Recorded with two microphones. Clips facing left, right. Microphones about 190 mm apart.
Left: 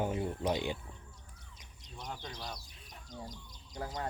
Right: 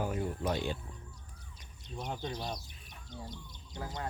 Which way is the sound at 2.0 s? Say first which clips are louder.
Right 5 dB; 25° right (ahead or behind).